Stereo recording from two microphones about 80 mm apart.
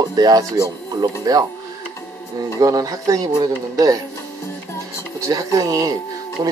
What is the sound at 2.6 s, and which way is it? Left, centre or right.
Speech, right.